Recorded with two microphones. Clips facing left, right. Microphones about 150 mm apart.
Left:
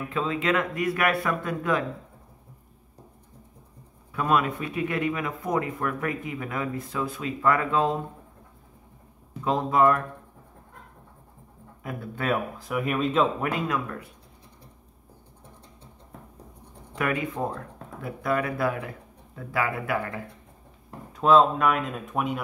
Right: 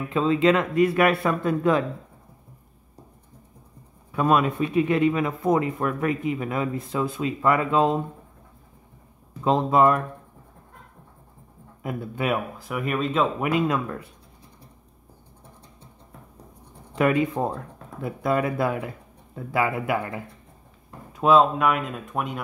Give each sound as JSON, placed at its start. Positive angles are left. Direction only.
{"t": 0.1, "sound": "speech", "side_deg": -30}
{"t": 4.1, "sound": "speech", "side_deg": -25}
{"t": 9.4, "sound": "speech", "side_deg": -25}
{"t": 11.8, "sound": "speech", "side_deg": -15}
{"t": 12.5, "sound": "speech", "side_deg": 0}
{"t": 13.4, "sound": "speech", "side_deg": -20}
{"t": 16.9, "sound": "speech", "side_deg": -25}
{"t": 21.1, "sound": "speech", "side_deg": -5}